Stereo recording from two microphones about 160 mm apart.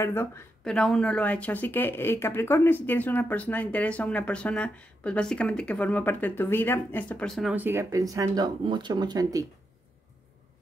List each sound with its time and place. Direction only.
0.0 s speech: 15° left (ahead or behind)
7.5 s speech: 15° right (ahead or behind)